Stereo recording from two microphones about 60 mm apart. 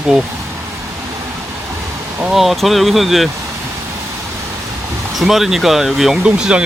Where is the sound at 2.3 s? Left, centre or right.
Centre.